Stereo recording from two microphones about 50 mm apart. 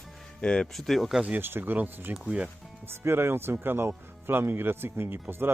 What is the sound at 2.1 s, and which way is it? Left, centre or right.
Speech, centre.